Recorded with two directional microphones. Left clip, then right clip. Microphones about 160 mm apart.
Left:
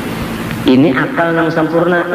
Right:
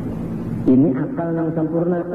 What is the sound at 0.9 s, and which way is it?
A man's voice, 30° left (ahead or behind).